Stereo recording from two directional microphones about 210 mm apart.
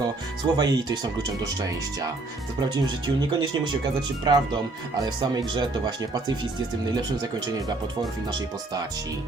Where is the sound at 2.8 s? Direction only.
20° right (ahead or behind).